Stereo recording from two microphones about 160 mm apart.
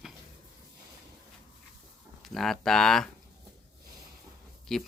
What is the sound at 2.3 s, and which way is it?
Speech, centre (ahead or behind).